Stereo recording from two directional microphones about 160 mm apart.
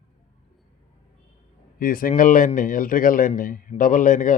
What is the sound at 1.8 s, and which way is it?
Speech, 65° left (ahead or behind).